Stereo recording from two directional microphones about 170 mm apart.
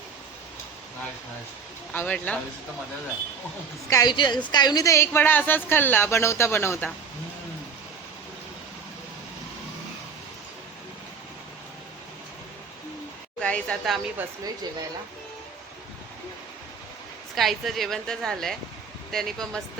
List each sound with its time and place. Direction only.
1.9 s speech: 10° left (ahead or behind)
3.8 s a woman's voice: 20° left (ahead or behind)
13.4 s a woman's voice: 5° left (ahead or behind)
17.3 s speech: centre (ahead or behind)